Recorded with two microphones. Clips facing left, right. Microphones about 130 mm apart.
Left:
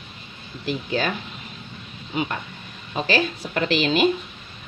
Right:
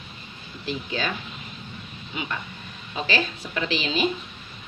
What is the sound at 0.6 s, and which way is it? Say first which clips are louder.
Speech: left 4 dB; 50° left (ahead or behind).